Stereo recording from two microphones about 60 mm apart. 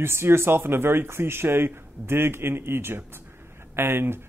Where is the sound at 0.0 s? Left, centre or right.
Right.